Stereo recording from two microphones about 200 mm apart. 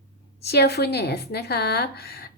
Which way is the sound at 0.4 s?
55° left (ahead or behind).